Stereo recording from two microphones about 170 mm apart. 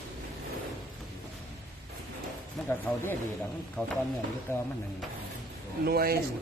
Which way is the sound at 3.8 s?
5° left (ahead or behind).